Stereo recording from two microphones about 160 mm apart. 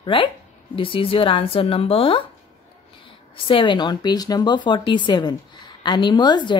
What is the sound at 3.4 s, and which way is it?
A woman's voice, 30° left (ahead or behind).